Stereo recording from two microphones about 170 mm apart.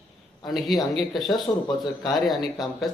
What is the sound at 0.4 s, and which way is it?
Speech, centre (ahead or behind).